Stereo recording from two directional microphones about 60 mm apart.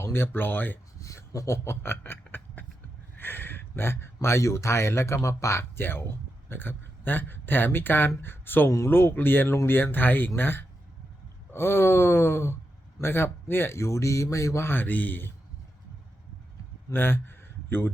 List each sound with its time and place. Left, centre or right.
0.0 s speech: left
0.9 s speech: left
14.7 s speech: left
16.9 s a man's voice: left